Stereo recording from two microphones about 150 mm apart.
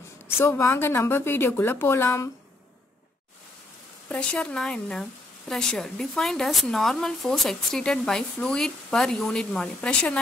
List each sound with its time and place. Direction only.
0.4 s speech: 15° left (ahead or behind)
4.1 s speech: 5° left (ahead or behind)